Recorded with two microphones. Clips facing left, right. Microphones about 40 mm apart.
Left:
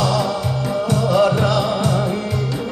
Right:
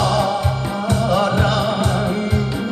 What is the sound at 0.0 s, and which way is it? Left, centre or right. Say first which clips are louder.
Music: right 1 dB; right.